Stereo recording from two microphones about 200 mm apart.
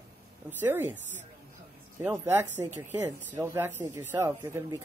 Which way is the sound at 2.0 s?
10° right (ahead or behind).